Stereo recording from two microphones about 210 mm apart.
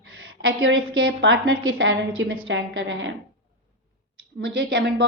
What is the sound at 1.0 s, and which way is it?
A woman's voice, 60° right (ahead or behind).